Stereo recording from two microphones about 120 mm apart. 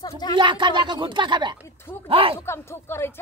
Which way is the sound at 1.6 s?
20° left (ahead or behind).